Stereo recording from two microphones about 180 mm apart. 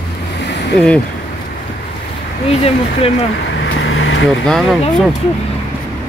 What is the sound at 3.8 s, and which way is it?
Vehicle, 90° left.